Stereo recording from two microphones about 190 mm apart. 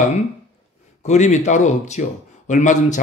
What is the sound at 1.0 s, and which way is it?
A man's voice, 40° left (ahead or behind).